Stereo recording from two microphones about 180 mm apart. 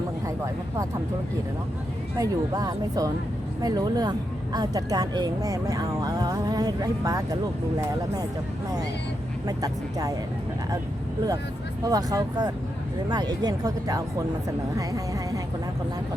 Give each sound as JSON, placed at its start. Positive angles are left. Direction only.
{"t": 0.3, "sound": "speech", "side_deg": -15}
{"t": 2.1, "sound": "speech", "side_deg": -20}
{"t": 9.5, "sound": "speech", "side_deg": -20}
{"t": 11.9, "sound": "speech", "side_deg": -20}